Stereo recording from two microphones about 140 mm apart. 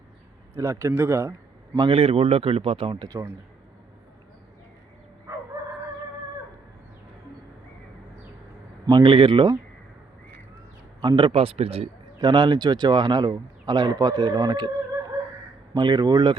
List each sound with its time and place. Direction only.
0.5 s speech: 20° right (ahead or behind)
1.7 s a man's voice: 35° right (ahead or behind)
5.3 s chicken: 25° right (ahead or behind)
8.9 s a man's voice: 35° right (ahead or behind)
11.0 s speech: 30° right (ahead or behind)
12.2 s speech: 30° right (ahead or behind)
15.7 s speech: 30° right (ahead or behind)